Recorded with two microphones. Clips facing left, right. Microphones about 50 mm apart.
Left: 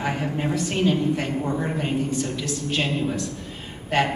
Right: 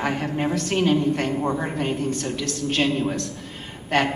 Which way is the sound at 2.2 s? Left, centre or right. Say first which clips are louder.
Even; right.